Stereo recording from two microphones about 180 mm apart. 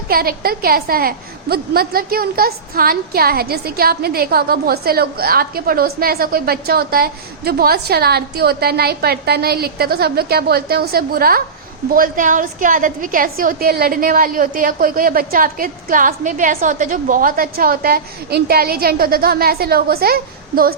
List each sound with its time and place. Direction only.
0.1 s a woman's voice: 55° right (ahead or behind)